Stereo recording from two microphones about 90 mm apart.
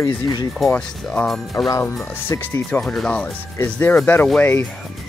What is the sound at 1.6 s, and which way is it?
Speech, 40° left (ahead or behind).